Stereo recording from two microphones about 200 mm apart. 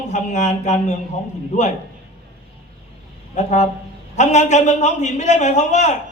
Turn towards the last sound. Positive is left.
turn(degrees=35)  # may be behind; listen again after turning